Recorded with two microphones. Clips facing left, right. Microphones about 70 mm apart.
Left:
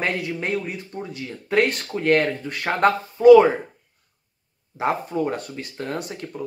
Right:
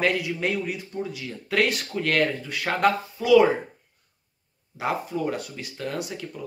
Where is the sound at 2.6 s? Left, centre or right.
Left.